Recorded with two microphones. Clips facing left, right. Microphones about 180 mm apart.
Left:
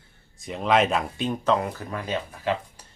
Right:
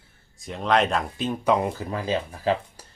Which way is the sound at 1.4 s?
20° right (ahead or behind).